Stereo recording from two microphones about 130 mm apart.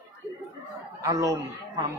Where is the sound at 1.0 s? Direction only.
25° right (ahead or behind).